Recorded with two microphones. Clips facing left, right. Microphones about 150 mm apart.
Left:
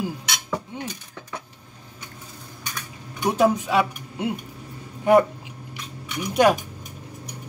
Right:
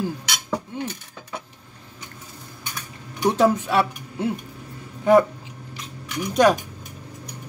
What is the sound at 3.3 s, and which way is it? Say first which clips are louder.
Speech: right 1 dB; 10° left (ahead or behind).